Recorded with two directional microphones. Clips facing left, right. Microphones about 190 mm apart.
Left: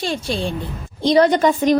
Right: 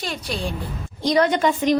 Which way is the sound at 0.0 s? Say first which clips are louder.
Left 5 dB; 30° left (ahead or behind).